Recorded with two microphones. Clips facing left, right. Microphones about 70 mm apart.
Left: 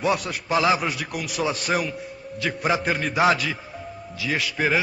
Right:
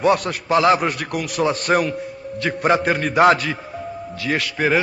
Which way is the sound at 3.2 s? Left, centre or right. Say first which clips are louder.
Right 6 dB; right.